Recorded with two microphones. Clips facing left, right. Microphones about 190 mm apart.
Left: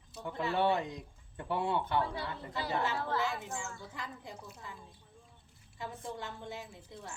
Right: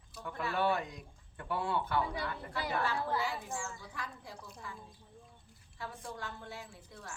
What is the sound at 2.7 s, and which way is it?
Speech, 20° left (ahead or behind).